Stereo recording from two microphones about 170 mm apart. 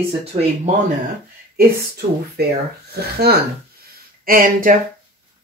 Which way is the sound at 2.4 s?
75° right (ahead or behind).